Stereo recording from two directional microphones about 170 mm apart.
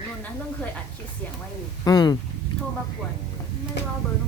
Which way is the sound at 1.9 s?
25° left (ahead or behind).